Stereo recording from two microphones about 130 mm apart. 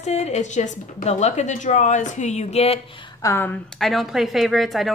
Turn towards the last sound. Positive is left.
turn(degrees=0)  # may be behind; listen again after turning